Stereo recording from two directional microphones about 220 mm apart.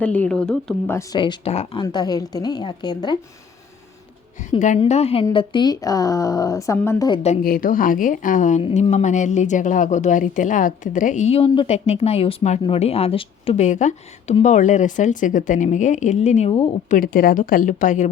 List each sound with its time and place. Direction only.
0.0 s speech: 5° left (ahead or behind)
4.4 s a woman's voice: 35° left (ahead or behind); by 7.2 s 15° left (ahead or behind)
7.4 s a woman's voice: 40° left (ahead or behind)